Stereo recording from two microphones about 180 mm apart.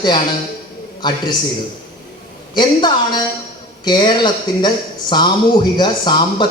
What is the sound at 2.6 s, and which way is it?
Speech, 25° left (ahead or behind).